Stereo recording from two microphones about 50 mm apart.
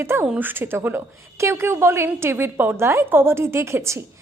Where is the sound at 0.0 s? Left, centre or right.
Right.